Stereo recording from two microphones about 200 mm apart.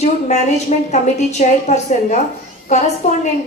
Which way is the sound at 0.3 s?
35° left (ahead or behind).